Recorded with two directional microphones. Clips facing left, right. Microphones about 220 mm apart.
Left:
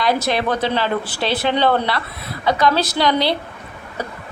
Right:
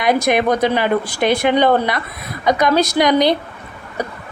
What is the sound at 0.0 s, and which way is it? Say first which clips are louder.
Speech: right 4 dB; 15° right (ahead or behind).